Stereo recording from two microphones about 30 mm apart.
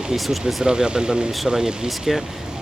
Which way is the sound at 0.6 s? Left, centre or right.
Right.